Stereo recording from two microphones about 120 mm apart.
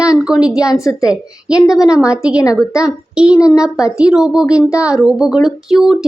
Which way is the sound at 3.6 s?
5° right (ahead or behind).